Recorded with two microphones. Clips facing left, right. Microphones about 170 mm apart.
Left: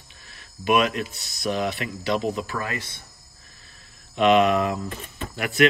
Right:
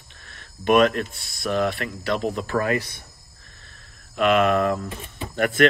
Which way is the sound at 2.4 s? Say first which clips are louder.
Right 6 dB; 45° right (ahead or behind).